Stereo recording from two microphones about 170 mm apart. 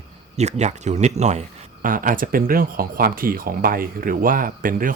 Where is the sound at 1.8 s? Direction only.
55° right (ahead or behind).